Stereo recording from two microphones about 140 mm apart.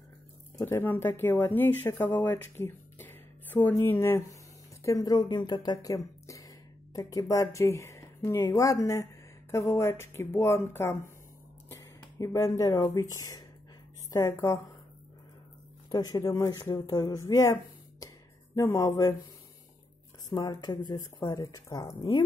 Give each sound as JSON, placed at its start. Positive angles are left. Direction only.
{"t": 0.7, "sound": "speech", "side_deg": 15}
{"t": 15.9, "sound": "speech", "side_deg": 25}
{"t": 18.0, "sound": "a sound", "side_deg": 25}
{"t": 20.2, "sound": "speech", "side_deg": 30}